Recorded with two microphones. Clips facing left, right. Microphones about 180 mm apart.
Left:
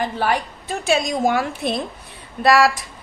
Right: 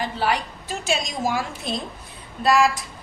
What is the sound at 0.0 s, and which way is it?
Speech, 50° left (ahead or behind).